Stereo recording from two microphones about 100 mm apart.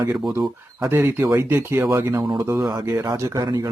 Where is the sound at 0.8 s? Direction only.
25° right (ahead or behind).